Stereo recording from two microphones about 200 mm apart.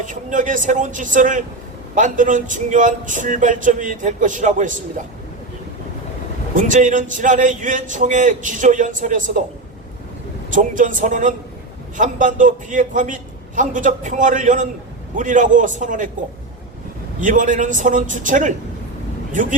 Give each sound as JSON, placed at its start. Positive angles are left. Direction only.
{"t": 0.0, "sound": "speech", "side_deg": -40}
{"t": 6.6, "sound": "speech", "side_deg": -40}
{"t": 10.5, "sound": "speech", "side_deg": -40}
{"t": 17.2, "sound": "speech", "side_deg": -40}